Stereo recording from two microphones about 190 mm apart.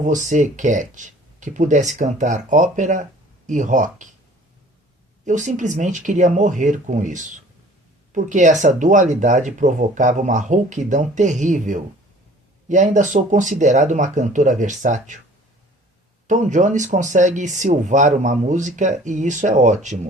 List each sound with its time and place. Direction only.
0.0 s speech: 40° right (ahead or behind)
5.2 s speech: 40° right (ahead or behind)
16.2 s speech: 40° right (ahead or behind)